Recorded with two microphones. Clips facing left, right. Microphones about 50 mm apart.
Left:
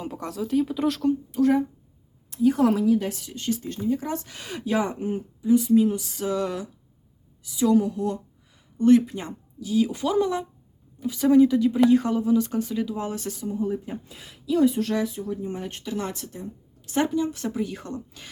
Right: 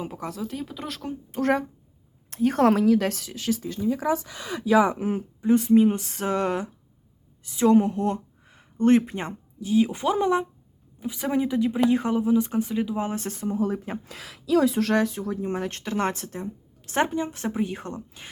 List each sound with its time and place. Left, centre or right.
0.0 s speech: centre
1.3 s speech: right
5.0 s speech: right
5.4 s speech: right
13.5 s speech: right